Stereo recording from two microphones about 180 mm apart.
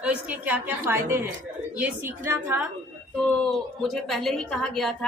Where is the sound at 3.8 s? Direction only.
Centre (ahead or behind).